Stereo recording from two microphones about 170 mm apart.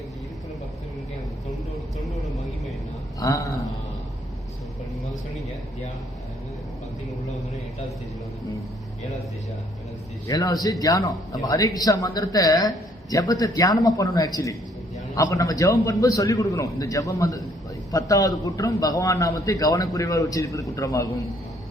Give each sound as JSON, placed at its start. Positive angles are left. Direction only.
{"t": 3.2, "sound": "a man's voice", "side_deg": 20}
{"t": 10.2, "sound": "a man's voice", "side_deg": 20}